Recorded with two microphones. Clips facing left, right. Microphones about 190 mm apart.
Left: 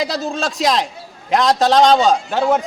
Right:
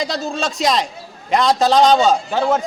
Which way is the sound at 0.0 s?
Centre (ahead or behind).